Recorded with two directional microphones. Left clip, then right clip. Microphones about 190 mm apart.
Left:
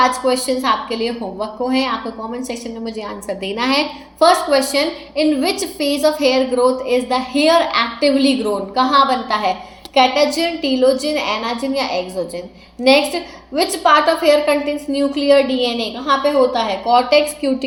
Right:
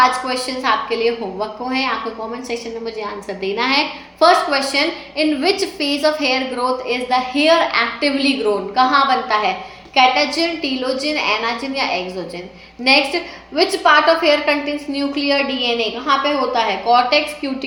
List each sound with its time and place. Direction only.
0.0 s a woman's voice: 45° left (ahead or behind)